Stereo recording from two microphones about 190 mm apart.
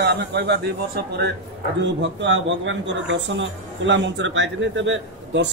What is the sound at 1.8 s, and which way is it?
Speech, 70° right (ahead or behind).